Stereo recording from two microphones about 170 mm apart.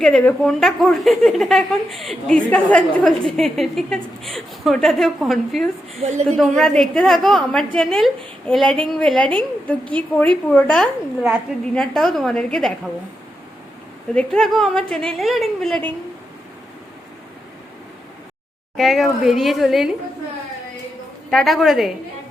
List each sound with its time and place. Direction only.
0.0 s a woman's voice: 5° left (ahead or behind)
6.0 s a woman's voice: 40° right (ahead or behind)
6.6 s a woman's voice: 5° left (ahead or behind)
14.2 s a woman's voice: 5° left (ahead or behind)
18.8 s a woman's voice: centre (ahead or behind)
21.2 s a woman's voice: centre (ahead or behind)